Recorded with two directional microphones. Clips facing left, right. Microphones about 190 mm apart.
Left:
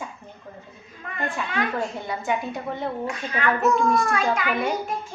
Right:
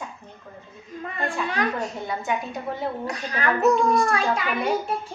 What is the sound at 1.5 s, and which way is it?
Speech, 40° right (ahead or behind).